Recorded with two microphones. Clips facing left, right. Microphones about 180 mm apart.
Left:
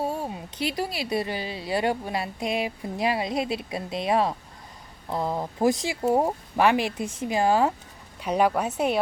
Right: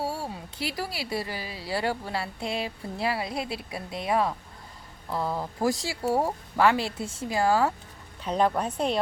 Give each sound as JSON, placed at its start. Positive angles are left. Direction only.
{"t": 0.0, "sound": "a woman's voice", "side_deg": 20}